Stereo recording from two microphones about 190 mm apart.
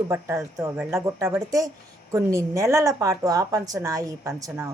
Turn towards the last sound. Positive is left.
turn(degrees=-15)  # may be behind; listen again after turning